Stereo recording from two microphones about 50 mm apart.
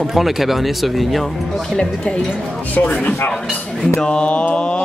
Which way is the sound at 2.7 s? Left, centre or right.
Left.